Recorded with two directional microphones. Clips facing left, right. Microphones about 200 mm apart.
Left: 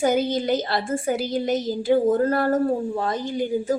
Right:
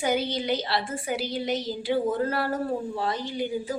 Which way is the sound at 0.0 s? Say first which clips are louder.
Left 5 dB; 45° left (ahead or behind).